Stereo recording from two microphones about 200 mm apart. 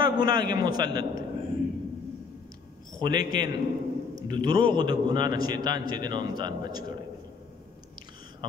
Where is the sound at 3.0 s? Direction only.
20° right (ahead or behind).